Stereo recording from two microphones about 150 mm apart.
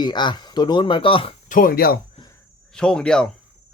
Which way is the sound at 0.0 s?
30° left (ahead or behind).